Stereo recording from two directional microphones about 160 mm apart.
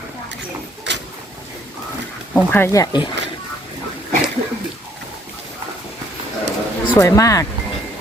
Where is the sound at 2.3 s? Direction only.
15° left (ahead or behind).